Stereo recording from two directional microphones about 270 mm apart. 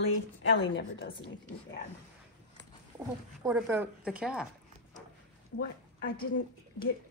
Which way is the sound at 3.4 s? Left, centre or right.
Centre.